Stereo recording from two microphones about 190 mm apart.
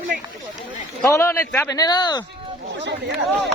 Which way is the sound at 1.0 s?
15° left (ahead or behind).